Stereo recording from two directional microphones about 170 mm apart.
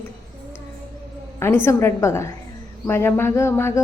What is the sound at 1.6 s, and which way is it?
A woman's voice, 15° left (ahead or behind).